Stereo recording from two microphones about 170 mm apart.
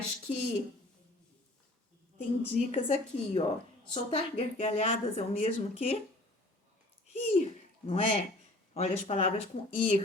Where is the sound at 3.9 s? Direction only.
35° left (ahead or behind).